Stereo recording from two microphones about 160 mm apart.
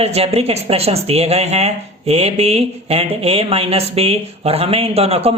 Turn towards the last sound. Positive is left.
turn(degrees=-40)  # may be behind; listen again after turning